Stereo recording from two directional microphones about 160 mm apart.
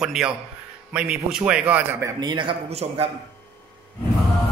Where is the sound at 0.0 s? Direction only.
5° right (ahead or behind).